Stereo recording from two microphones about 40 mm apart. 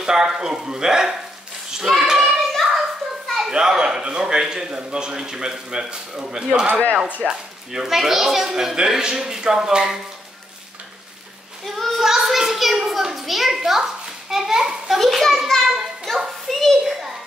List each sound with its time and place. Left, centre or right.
0.0 s a man's voice: centre
1.9 s child singing: centre
2.3 s hands: centre
3.3 s children playing: centre
3.5 s a man's voice: centre
11.6 s child singing: centre
12.0 s children playing: centre
14.3 s a man's voice: centre
15.0 s a child's voice: centre
15.7 s children playing: centre
16.4 s children playing: centre
16.8 s children playing: centre